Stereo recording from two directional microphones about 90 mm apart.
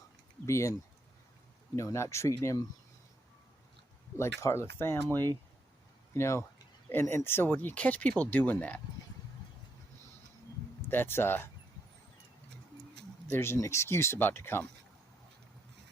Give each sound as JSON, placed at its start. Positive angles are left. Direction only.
{"t": 0.4, "sound": "speech", "side_deg": 30}
{"t": 1.7, "sound": "speech", "side_deg": 35}
{"t": 4.2, "sound": "speech", "side_deg": 30}
{"t": 10.8, "sound": "speech", "side_deg": 25}
{"t": 13.2, "sound": "speech", "side_deg": 25}